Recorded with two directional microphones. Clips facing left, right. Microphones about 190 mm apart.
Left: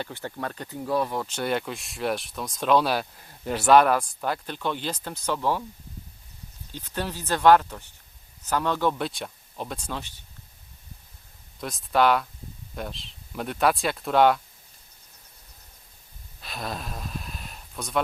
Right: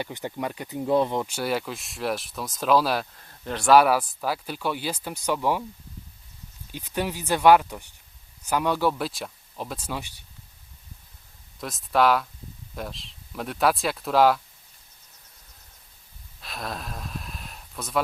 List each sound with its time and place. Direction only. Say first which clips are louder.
0.0 s speech: right 2 dB; 15° right (ahead or behind)
1.3 s speech: even; 5° right (ahead or behind)
3.8 s speech: even; 5° right (ahead or behind)
6.7 s speech: right 3 dB; 15° right (ahead or behind)
11.6 s speech: even; centre (ahead or behind)
16.4 s a sound: left 1 dB; centre (ahead or behind)